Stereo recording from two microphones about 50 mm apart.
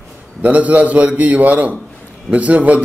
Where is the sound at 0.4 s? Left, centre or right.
Right.